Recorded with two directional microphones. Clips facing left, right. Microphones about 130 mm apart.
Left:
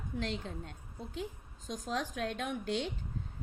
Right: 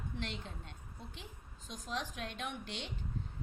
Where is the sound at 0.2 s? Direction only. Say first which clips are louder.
Left 9 dB; 40° left (ahead or behind).